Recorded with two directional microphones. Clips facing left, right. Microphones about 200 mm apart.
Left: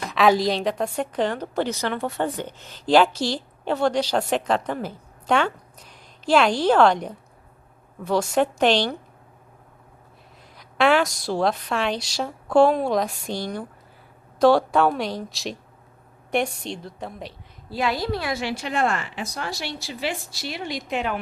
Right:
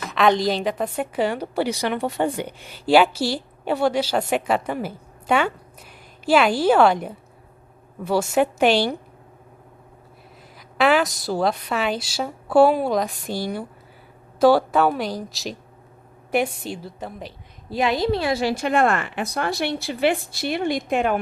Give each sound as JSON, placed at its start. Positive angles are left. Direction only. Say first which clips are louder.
{"t": 0.0, "sound": "a woman's voice", "louder": "even", "side_deg": 0}
{"t": 10.6, "sound": "a woman's voice", "louder": "right 1 dB", "side_deg": 0}
{"t": 17.7, "sound": "a woman's voice", "louder": "right 4 dB", "side_deg": -20}
{"t": 18.5, "sound": "speech", "louder": "right 5 dB", "side_deg": -55}